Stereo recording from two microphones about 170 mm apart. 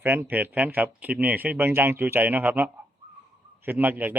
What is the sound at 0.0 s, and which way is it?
A man's voice, 15° right (ahead or behind).